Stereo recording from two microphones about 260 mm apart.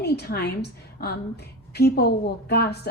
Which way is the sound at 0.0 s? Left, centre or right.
Left.